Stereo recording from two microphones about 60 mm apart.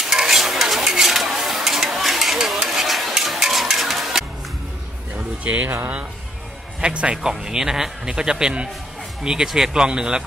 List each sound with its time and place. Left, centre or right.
0.0 s stir: centre
5.1 s a sound: right
6.8 s speech: centre